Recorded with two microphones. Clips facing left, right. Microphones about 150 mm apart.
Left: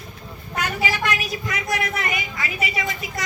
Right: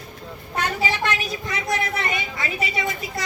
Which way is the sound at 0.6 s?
30° right (ahead or behind).